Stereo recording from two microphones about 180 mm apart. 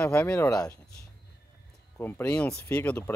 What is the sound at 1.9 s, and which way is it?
Speech, 10° left (ahead or behind).